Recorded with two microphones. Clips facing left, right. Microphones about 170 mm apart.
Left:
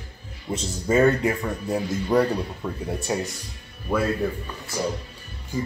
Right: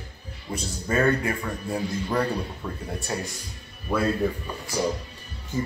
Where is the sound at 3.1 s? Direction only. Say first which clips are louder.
Left 4 dB; 20° left (ahead or behind).